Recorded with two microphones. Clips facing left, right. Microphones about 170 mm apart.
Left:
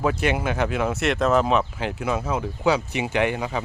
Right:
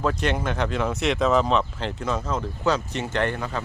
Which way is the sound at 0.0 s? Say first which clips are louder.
Left 2 dB; 5° left (ahead or behind).